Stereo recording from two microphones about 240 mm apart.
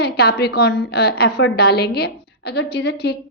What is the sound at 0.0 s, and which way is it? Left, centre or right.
A woman's voice, left.